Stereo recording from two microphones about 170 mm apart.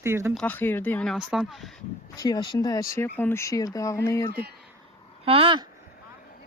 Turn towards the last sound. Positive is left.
turn(degrees=-30)  # may be behind; listen again after turning